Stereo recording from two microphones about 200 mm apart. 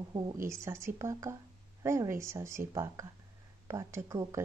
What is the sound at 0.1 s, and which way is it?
A woman's voice, 20° right (ahead or behind).